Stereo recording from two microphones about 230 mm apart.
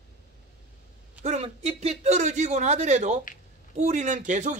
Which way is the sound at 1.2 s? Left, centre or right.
Right.